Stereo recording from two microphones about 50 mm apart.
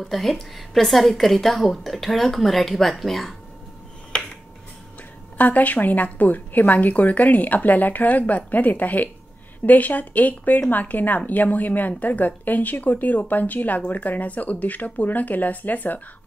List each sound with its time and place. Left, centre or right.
0.0 s a woman's voice: centre
5.4 s speech: left